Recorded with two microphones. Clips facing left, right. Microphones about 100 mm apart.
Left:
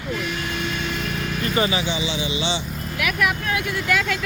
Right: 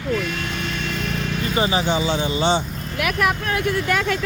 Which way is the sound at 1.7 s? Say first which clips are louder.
Right 4 dB; 40° right (ahead or behind).